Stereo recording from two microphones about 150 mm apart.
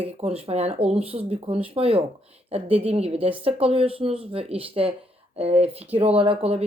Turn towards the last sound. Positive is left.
turn(degrees=-40)  # may be behind; listen again after turning